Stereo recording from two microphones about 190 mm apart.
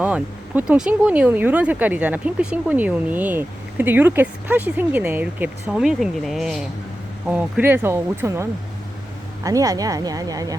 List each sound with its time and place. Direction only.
0.0 s a woman's voice: 10° right (ahead or behind)